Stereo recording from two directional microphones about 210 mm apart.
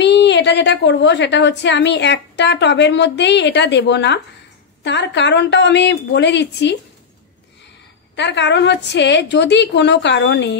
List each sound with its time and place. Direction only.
0.0 s a woman's voice: 55° left (ahead or behind)
8.2 s a woman's voice: 55° left (ahead or behind)